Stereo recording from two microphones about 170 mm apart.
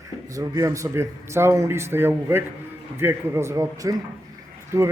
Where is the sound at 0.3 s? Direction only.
20° right (ahead or behind).